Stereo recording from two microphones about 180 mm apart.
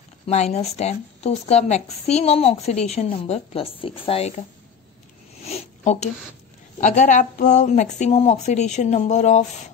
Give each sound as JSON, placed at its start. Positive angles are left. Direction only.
{"t": 0.3, "sound": "a woman's voice", "side_deg": 35}
{"t": 5.4, "sound": "sniff", "side_deg": 35}
{"t": 6.8, "sound": "a woman's voice", "side_deg": 45}